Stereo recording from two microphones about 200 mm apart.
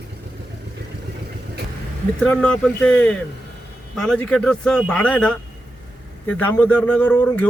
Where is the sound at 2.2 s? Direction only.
5° left (ahead or behind).